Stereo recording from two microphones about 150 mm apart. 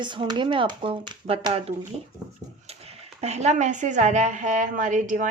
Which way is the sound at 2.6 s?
45° right (ahead or behind).